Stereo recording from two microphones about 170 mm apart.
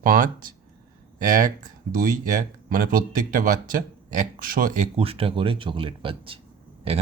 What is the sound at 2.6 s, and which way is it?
Speech, 55° right (ahead or behind).